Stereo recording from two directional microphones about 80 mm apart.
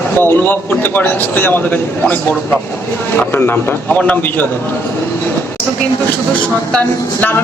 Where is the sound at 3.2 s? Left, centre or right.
Left.